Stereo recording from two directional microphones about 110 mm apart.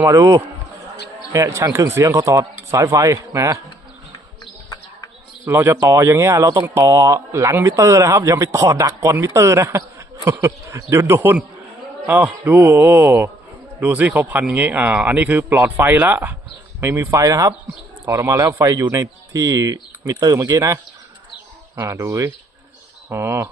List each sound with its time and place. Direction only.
0.0 s speech: 30° right (ahead or behind)
5.5 s speech: 20° right (ahead or behind)
16.8 s speech: 25° right (ahead or behind)
21.8 s speech: 25° right (ahead or behind)